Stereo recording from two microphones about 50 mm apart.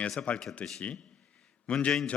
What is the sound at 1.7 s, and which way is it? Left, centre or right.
Speech, left.